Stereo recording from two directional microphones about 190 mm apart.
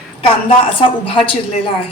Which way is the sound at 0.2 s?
30° left (ahead or behind).